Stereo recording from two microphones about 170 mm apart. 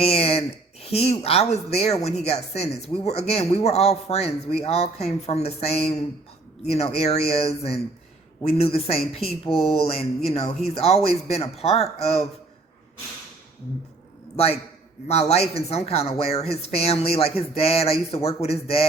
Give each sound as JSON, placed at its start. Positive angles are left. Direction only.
{"t": 0.0, "sound": "speech", "side_deg": 35}
{"t": 14.3, "sound": "speech", "side_deg": 35}